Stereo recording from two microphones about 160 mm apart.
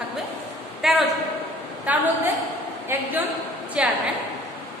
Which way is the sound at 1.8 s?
10° right (ahead or behind).